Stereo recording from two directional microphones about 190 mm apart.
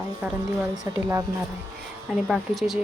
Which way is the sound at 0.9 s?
20° right (ahead or behind).